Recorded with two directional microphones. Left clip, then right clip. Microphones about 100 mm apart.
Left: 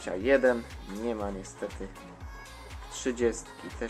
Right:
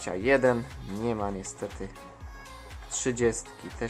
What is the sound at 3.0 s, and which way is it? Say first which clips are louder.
Speech: right 2 dB; 35° right (ahead or behind).